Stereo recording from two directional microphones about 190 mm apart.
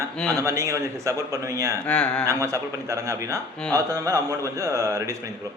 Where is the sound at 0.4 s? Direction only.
15° right (ahead or behind).